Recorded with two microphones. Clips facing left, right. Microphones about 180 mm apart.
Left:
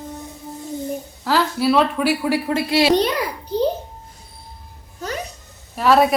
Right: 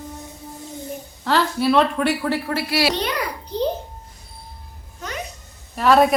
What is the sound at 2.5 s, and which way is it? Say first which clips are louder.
Speech: left 5 dB; 20° left (ahead or behind).